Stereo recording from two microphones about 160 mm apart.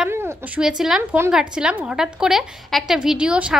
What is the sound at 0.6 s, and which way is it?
A woman's voice, 5° right (ahead or behind).